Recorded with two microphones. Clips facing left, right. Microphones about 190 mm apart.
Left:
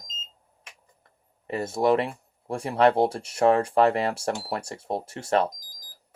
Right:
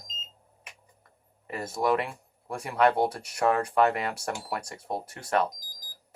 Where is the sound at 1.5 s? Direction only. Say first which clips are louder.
Left 4 dB; 25° left (ahead or behind).